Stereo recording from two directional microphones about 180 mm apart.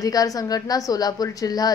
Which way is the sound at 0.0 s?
20° left (ahead or behind).